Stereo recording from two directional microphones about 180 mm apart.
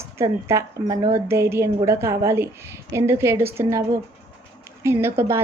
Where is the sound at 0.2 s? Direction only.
15° right (ahead or behind).